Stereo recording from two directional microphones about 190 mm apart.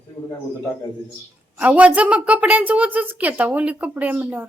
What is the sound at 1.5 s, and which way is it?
A woman's voice, 5° right (ahead or behind).